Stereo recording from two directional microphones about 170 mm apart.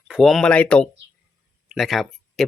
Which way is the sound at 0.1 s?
Centre (ahead or behind).